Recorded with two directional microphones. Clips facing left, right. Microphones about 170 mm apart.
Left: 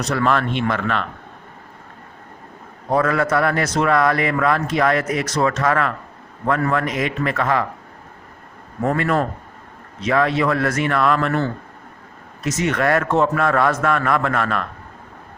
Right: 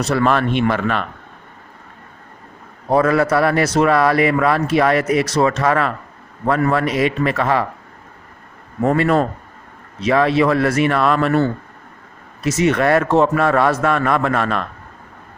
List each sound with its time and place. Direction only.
0.1 s a man's voice: 20° right (ahead or behind)
2.9 s a man's voice: 25° right (ahead or behind)
8.8 s a man's voice: 20° right (ahead or behind)
12.5 s a man's voice: 15° right (ahead or behind)